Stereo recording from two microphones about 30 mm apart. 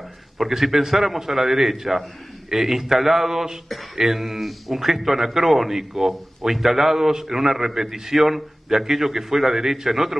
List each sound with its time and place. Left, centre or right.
0.4 s a man's voice: centre